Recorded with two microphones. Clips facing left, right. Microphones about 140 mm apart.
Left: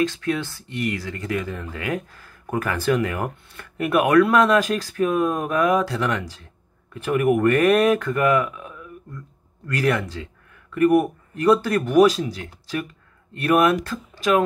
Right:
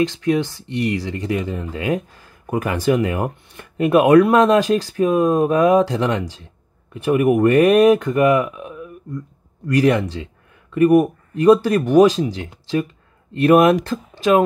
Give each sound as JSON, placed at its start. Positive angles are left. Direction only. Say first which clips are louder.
{"t": 0.0, "sound": "speech", "louder": "right 5 dB", "side_deg": -20}